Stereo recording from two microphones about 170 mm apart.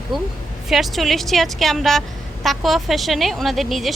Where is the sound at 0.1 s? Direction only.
Centre (ahead or behind).